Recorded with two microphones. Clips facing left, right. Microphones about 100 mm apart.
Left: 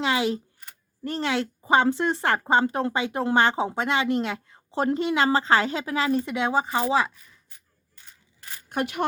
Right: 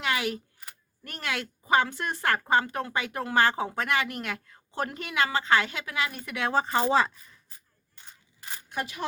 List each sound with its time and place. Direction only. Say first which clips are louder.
0.0 s camera: left 5 dB; 25° left (ahead or behind)
1.0 s a woman's voice: left 8 dB; 25° left (ahead or behind)
6.5 s speech: right 1 dB; 10° left (ahead or behind)
8.7 s speech: left 7 dB; 65° left (ahead or behind)